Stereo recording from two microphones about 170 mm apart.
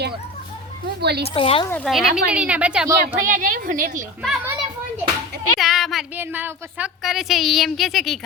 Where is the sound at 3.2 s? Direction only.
50° right (ahead or behind).